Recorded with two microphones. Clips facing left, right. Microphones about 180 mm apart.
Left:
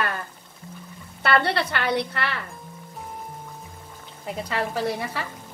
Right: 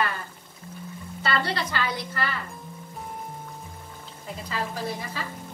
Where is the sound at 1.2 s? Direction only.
60° left (ahead or behind).